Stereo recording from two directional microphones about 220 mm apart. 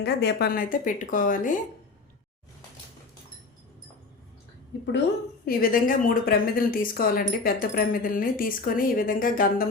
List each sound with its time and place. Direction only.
0.0 s a woman's voice: 50° left (ahead or behind)
4.7 s a woman's voice: 50° left (ahead or behind)